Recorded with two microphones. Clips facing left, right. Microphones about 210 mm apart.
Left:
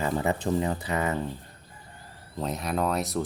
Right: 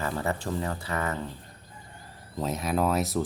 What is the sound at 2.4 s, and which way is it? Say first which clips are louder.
Speech: right 1 dB; centre (ahead or behind).